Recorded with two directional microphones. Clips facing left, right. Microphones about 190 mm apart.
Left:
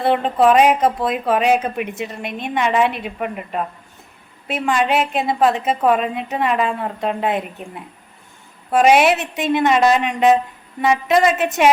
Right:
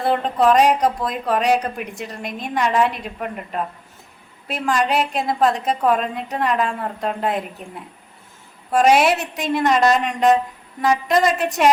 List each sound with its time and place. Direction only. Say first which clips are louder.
0.0 s a woman's voice: left 2 dB; 5° left (ahead or behind)